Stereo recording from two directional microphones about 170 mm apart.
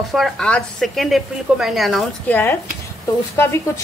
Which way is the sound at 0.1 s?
Centre (ahead or behind).